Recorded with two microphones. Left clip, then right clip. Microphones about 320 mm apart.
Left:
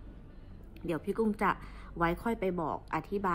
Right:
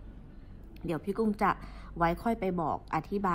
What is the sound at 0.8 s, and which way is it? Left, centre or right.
A woman's voice, centre.